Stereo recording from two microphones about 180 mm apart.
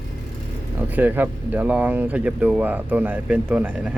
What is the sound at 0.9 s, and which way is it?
Speech, 10° right (ahead or behind).